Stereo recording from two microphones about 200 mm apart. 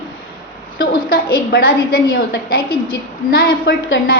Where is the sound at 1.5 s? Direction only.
45° left (ahead or behind).